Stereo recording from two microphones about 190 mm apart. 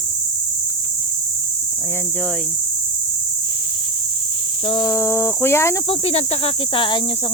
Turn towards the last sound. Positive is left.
turn(degrees=25)  # may be behind; listen again after turning